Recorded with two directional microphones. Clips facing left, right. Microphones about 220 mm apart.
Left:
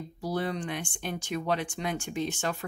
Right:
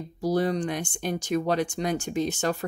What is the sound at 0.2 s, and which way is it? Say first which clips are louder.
Speech: right 7 dB; 40° right (ahead or behind).